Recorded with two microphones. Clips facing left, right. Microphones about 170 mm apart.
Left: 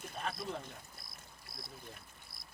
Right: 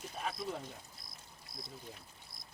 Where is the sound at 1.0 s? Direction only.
5° left (ahead or behind).